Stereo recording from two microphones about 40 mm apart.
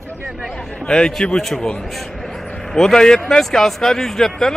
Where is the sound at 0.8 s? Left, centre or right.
Left.